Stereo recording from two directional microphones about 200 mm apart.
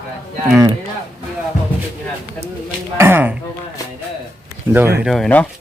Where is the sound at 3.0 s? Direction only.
10° right (ahead or behind).